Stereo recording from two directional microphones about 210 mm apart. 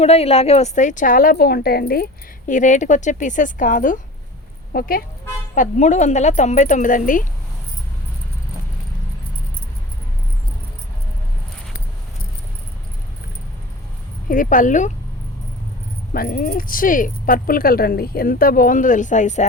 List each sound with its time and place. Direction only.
0.0 s speech: 30° left (ahead or behind); by 2.0 s 45° left (ahead or behind)
2.5 s speech: 35° left (ahead or behind)
14.3 s speech: 40° left (ahead or behind)
16.1 s speech: 45° left (ahead or behind)